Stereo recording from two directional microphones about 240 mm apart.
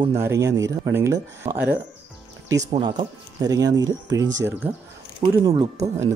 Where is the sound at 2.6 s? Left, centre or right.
Right; by 4.7 s centre.